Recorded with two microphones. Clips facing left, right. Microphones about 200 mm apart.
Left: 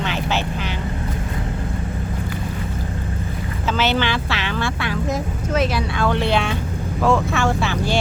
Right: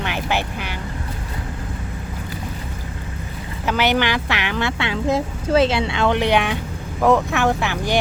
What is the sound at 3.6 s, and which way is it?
Speech, 15° right (ahead or behind).